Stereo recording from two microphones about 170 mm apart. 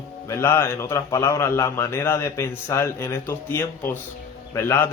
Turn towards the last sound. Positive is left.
turn(degrees=15)  # may be behind; listen again after turning